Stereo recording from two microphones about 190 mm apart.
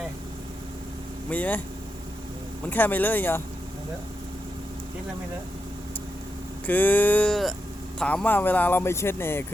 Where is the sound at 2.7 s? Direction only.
10° left (ahead or behind).